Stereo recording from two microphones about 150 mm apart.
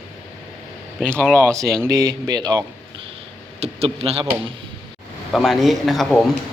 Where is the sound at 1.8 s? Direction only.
25° right (ahead or behind).